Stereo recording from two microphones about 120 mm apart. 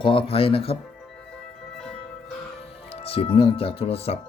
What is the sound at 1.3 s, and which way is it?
Music, 5° left (ahead or behind).